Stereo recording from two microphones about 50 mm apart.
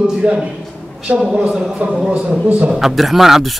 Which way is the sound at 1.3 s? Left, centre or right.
Centre.